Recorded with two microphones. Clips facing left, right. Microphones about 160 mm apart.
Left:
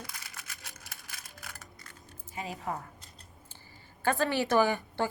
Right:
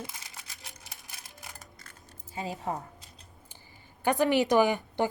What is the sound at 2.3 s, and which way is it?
Speech, 25° right (ahead or behind).